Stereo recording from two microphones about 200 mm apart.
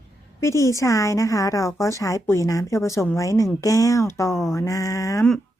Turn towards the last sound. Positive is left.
turn(degrees=15)  # may be behind; listen again after turning